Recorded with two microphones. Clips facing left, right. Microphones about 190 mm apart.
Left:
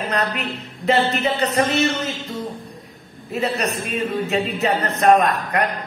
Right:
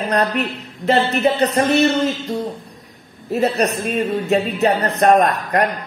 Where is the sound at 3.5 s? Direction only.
40° right (ahead or behind).